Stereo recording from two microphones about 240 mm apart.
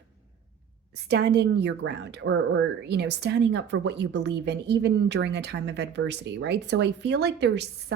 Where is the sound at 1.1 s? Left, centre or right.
Right.